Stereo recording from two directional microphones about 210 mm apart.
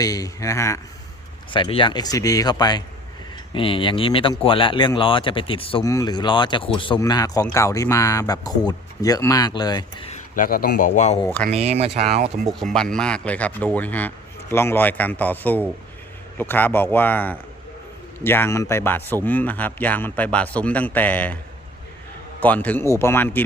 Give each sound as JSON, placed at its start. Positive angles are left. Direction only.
{"t": 0.0, "sound": "speech", "side_deg": 15}
{"t": 10.1, "sound": "speech", "side_deg": 40}
{"t": 11.5, "sound": "speech", "side_deg": -30}
{"t": 12.5, "sound": "speech", "side_deg": 0}
{"t": 22.4, "sound": "speech", "side_deg": 10}